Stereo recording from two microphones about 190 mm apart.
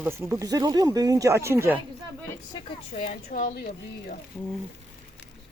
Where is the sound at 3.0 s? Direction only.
40° left (ahead or behind).